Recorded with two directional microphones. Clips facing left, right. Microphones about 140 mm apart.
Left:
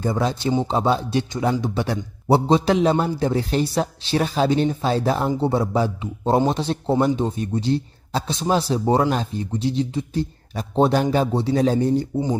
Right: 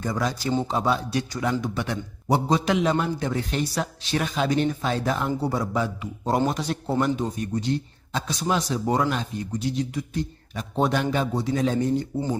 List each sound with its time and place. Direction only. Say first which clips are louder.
0.0 s speech: left 4 dB; 30° left (ahead or behind)